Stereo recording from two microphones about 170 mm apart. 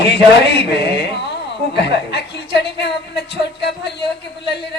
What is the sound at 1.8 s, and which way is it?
A woman's voice, 80° left.